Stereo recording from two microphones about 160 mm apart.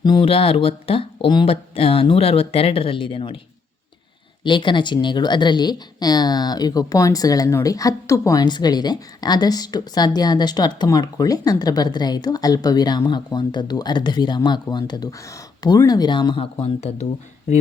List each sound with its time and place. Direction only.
0.0 s speech: 30° left (ahead or behind)
4.4 s speech: 30° left (ahead or behind)